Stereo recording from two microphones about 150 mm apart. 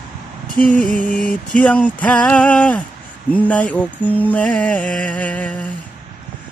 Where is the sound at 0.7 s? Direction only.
65° left (ahead or behind).